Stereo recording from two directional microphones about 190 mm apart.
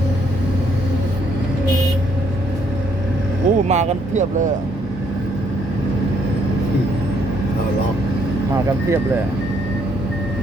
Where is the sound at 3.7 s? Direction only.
35° right (ahead or behind).